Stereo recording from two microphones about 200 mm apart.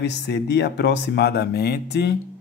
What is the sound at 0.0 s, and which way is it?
Speech, 55° left (ahead or behind).